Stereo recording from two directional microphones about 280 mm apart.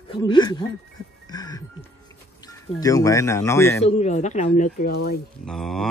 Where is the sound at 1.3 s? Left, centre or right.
Centre.